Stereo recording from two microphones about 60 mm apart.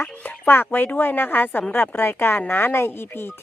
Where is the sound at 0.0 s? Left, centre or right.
Left.